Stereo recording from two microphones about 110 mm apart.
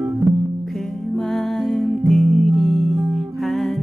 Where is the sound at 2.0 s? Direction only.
Centre (ahead or behind).